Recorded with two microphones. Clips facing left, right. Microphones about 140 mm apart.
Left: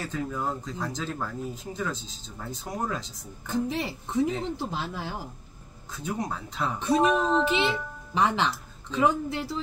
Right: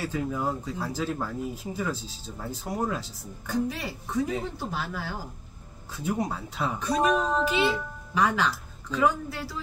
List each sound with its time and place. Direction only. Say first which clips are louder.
0.0 s speech: right 2 dB; 10° right (ahead or behind)
3.4 s a woman's voice: left 1 dB; 25° left (ahead or behind)
5.9 s speech: right 3 dB; 5° right (ahead or behind)
8.1 s speech: even; 25° left (ahead or behind)